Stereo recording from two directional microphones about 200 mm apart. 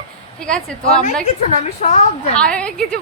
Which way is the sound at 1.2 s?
35° left (ahead or behind).